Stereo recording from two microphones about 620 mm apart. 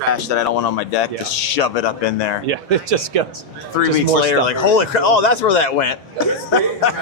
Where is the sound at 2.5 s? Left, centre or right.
Right.